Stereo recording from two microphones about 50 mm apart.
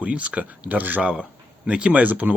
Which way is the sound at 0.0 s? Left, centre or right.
Right.